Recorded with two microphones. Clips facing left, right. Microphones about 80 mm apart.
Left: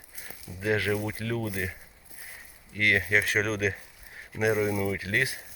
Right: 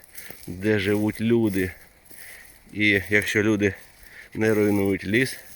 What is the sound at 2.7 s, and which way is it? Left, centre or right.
Speech, left.